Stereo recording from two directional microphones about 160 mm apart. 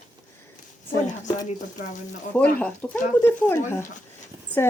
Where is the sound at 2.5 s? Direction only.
10° left (ahead or behind).